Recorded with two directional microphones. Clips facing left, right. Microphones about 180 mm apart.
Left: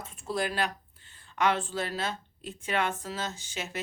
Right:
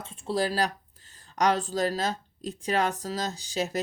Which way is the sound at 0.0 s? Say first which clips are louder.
Right 4 dB; 30° right (ahead or behind).